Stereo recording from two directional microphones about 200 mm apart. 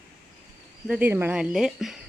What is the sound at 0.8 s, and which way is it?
A woman's voice, 10° right (ahead or behind).